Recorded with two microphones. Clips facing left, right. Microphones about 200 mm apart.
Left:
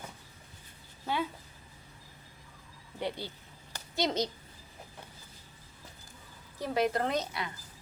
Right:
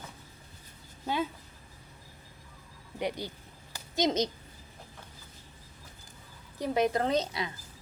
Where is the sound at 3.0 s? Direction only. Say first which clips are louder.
Right 2 dB; 15° right (ahead or behind).